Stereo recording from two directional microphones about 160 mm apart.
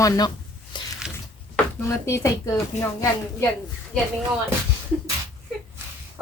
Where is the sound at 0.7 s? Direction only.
30° left (ahead or behind).